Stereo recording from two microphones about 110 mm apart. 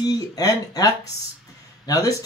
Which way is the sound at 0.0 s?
35° left (ahead or behind).